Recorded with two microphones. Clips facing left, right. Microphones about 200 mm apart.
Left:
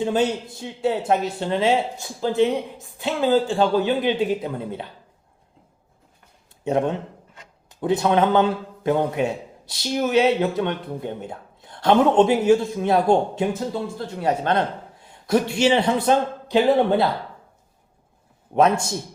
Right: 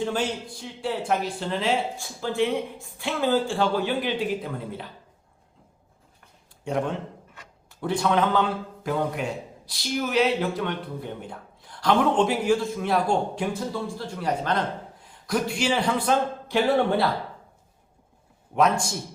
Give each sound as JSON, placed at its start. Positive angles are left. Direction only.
{"t": 0.0, "sound": "a man's voice", "side_deg": 20}
{"t": 6.7, "sound": "a man's voice", "side_deg": 25}
{"t": 18.5, "sound": "a man's voice", "side_deg": 25}